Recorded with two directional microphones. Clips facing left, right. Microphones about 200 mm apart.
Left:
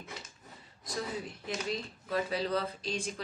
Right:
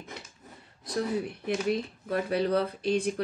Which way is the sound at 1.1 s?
60° right (ahead or behind).